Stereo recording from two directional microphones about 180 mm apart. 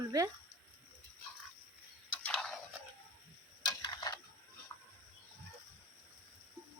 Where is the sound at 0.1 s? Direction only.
20° right (ahead or behind).